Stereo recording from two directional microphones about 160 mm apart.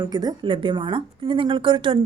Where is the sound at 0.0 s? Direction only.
25° right (ahead or behind).